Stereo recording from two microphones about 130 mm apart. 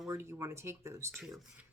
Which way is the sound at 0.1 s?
20° right (ahead or behind).